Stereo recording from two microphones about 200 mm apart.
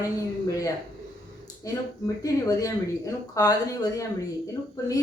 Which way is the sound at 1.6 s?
15° left (ahead or behind).